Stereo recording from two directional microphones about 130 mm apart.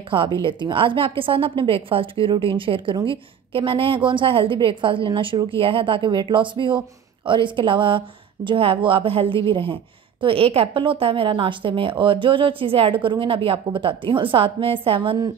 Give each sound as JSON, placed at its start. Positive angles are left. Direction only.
{"t": 0.1, "sound": "a woman's voice", "side_deg": -40}